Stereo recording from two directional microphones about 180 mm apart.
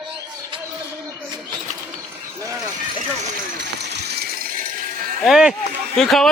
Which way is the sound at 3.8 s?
65° right (ahead or behind).